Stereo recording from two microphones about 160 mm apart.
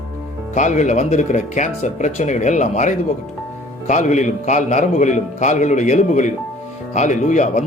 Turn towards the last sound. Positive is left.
turn(degrees=50)  # may be behind; listen again after turning